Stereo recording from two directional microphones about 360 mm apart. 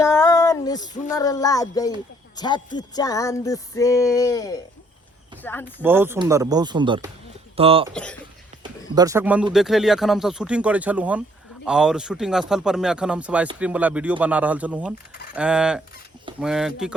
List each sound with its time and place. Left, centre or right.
0.0 s female singing: centre
1.1 s music: centre
5.4 s speech: centre
5.8 s speech: centre
9.0 s speech: centre